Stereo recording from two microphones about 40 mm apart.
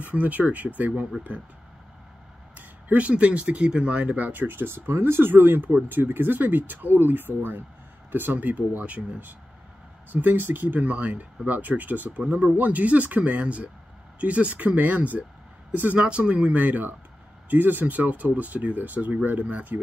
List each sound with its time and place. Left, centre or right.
0.0 s speech: right
3.1 s speech: right
4.2 s speech: right
8.4 s speech: right
10.1 s speech: right
16.0 s speech: right